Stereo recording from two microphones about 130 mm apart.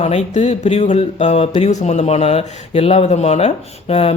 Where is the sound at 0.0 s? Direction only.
60° left (ahead or behind).